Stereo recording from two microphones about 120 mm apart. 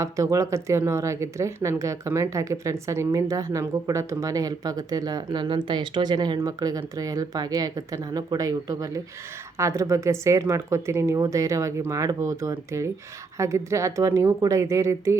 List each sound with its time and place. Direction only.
0.0 s speech: 25° right (ahead or behind)